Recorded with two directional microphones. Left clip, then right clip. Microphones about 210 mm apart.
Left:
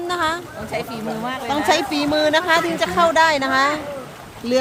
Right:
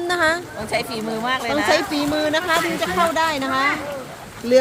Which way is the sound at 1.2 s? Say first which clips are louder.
Right 6 dB; 40° right (ahead or behind).